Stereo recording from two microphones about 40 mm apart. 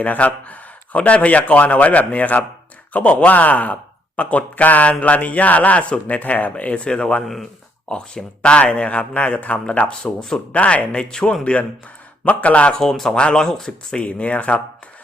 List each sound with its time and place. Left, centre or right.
0.0 s a man's voice: left
6.5 s a man's voice: left
10.2 s speech: centre
10.5 s a man's voice: left
12.2 s a man's voice: left
12.8 s speech: centre
13.1 s a man's voice: left
13.4 s speech: centre
14.0 s a man's voice: left